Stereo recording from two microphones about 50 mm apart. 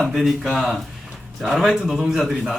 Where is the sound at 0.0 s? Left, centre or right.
Centre.